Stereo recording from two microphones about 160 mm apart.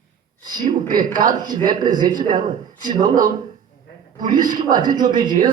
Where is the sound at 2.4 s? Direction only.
55° right (ahead or behind).